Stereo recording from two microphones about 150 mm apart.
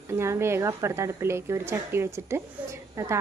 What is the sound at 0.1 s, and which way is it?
Speech, 15° right (ahead or behind).